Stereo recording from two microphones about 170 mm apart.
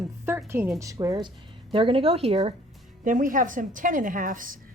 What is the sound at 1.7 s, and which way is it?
Speech, 30° right (ahead or behind).